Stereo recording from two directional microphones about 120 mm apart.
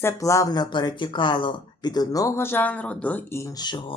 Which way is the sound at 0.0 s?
25° left (ahead or behind).